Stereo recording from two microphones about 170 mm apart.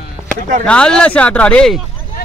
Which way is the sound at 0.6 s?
5° left (ahead or behind).